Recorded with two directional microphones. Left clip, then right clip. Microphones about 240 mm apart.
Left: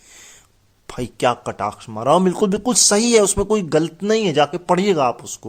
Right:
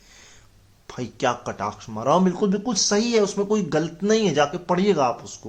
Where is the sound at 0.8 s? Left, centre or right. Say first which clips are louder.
Left 5 dB; left.